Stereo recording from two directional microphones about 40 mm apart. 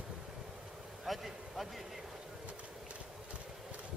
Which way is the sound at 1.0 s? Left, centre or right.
Centre.